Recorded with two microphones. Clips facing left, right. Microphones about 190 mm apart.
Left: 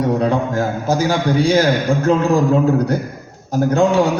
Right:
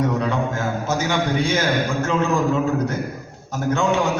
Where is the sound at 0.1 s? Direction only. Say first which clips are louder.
Left 5 dB; 35° left (ahead or behind).